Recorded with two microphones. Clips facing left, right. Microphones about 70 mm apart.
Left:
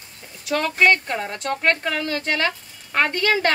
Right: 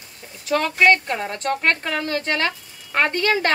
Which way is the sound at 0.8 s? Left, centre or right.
Right.